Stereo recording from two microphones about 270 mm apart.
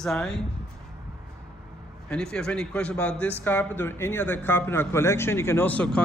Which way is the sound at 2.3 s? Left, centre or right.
Centre.